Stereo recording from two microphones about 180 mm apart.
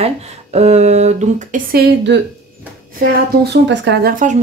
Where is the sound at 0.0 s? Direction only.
35° right (ahead or behind).